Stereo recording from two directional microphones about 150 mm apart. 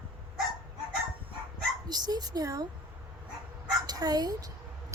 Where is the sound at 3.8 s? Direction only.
25° right (ahead or behind).